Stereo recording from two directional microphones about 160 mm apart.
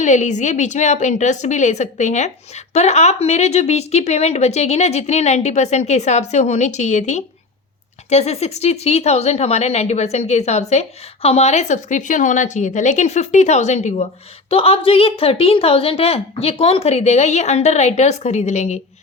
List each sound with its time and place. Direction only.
0.0 s a woman's voice: 50° left (ahead or behind)